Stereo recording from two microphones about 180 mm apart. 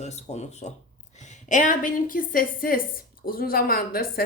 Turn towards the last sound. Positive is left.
turn(degrees=55)  # may be behind; listen again after turning